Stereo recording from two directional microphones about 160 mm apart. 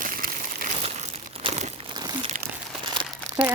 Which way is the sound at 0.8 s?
40° right (ahead or behind).